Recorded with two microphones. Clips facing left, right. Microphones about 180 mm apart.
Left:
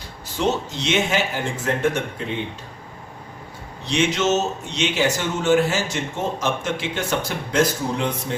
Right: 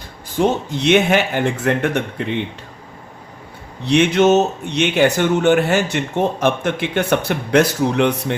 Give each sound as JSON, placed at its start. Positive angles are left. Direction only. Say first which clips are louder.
{"t": 0.3, "sound": "speech", "louder": "right 5 dB", "side_deg": -55}
{"t": 3.8, "sound": "speech", "louder": "right 7 dB", "side_deg": -60}